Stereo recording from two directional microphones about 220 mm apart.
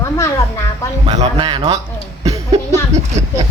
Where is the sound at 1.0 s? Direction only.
20° right (ahead or behind).